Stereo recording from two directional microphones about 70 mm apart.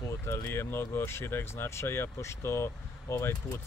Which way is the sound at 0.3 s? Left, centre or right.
Left.